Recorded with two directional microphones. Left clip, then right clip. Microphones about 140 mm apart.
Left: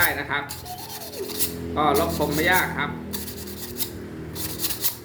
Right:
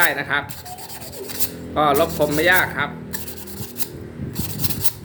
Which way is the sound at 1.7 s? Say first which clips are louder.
Right 4 dB; 65° right (ahead or behind).